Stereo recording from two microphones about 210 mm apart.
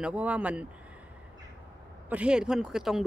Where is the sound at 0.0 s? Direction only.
5° right (ahead or behind).